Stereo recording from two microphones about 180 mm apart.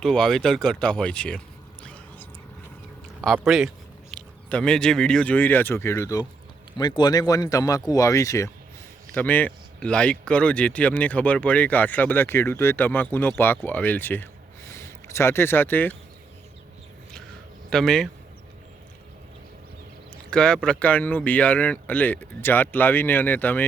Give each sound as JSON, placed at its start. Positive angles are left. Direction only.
{"t": 0.0, "sound": "speech", "side_deg": 5}
{"t": 1.8, "sound": "whispering", "side_deg": 5}
{"t": 3.2, "sound": "speech", "side_deg": 0}
{"t": 17.7, "sound": "speech", "side_deg": 5}
{"t": 20.3, "sound": "speech", "side_deg": 5}